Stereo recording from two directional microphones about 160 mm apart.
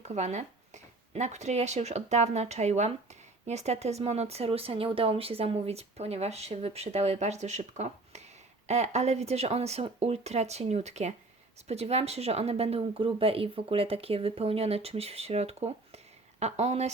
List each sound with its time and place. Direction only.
0.0 s a woman's voice: 45° right (ahead or behind)